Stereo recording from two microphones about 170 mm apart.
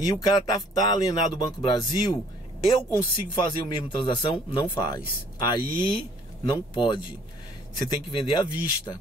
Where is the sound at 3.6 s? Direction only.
30° left (ahead or behind).